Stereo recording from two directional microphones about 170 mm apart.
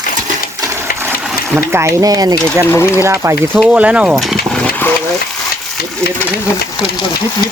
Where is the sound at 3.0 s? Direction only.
15° right (ahead or behind); by 4.9 s 5° left (ahead or behind).